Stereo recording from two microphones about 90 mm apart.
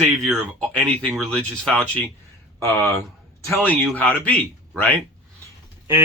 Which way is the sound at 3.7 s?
15° left (ahead or behind).